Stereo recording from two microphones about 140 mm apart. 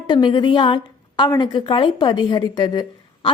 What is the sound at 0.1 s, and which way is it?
A woman's voice, 35° left (ahead or behind).